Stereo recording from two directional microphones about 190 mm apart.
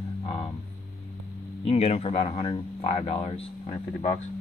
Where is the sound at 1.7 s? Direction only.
35° left (ahead or behind).